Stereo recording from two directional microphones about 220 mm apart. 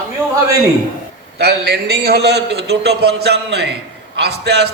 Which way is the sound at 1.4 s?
50° right (ahead or behind).